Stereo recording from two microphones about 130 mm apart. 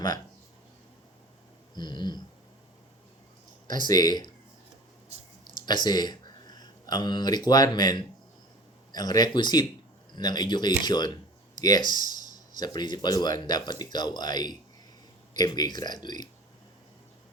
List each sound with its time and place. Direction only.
1.7 s speech: 35° left (ahead or behind)
3.7 s speech: 30° left (ahead or behind)
5.6 s speech: 35° left (ahead or behind)